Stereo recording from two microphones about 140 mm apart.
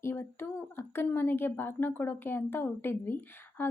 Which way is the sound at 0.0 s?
15° left (ahead or behind).